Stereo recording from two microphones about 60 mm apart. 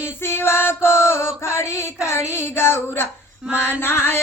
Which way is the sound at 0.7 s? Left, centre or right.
Left.